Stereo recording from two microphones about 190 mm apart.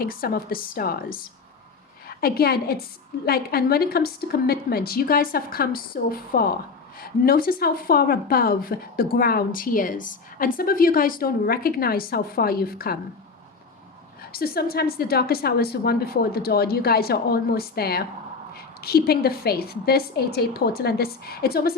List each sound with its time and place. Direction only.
0.0 s a woman's voice: 50° left (ahead or behind)
14.2 s a woman's voice: 55° left (ahead or behind)